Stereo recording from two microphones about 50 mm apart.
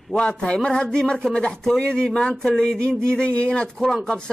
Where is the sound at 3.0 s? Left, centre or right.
Centre.